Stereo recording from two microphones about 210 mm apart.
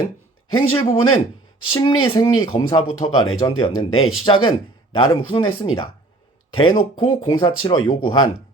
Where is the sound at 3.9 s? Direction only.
75° left (ahead or behind).